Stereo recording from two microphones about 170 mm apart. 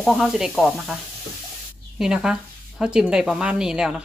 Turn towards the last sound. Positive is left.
turn(degrees=-5)  # may be behind; listen again after turning